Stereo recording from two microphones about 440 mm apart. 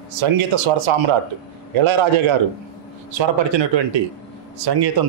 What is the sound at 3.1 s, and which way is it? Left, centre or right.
Speech, right.